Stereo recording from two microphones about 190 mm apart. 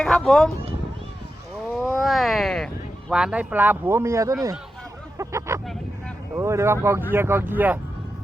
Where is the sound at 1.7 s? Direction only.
Centre (ahead or behind); by 4.5 s 15° right (ahead or behind).